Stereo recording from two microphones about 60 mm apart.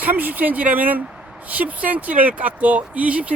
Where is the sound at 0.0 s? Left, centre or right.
Right.